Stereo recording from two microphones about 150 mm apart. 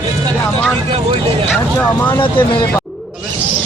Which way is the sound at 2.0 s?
15° left (ahead or behind).